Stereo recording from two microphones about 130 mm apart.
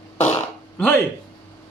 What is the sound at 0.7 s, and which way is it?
Speech, 15° left (ahead or behind).